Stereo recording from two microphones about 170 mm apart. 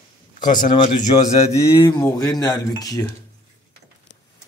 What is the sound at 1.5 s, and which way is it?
Speech, 20° left (ahead or behind).